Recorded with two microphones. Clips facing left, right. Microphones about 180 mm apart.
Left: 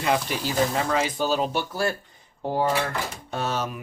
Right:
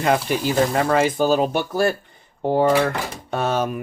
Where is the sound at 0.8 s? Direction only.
55° right (ahead or behind).